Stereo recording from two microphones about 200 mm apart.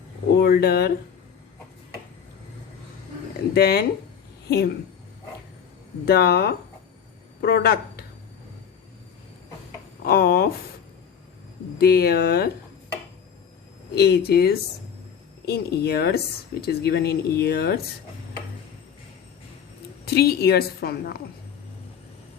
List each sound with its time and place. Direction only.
0.3 s speech: 50° left (ahead or behind)
3.5 s speech: 55° left (ahead or behind)
6.1 s speech: 55° left (ahead or behind)
10.1 s speech: 50° left (ahead or behind)
11.8 s speech: 50° left (ahead or behind)
13.9 s speech: 55° left (ahead or behind)
20.1 s speech: 50° left (ahead or behind)